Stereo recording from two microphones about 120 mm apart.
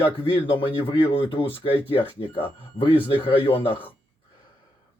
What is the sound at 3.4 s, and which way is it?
Speech, 50° left (ahead or behind).